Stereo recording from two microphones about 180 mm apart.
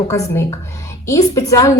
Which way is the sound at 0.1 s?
15° left (ahead or behind).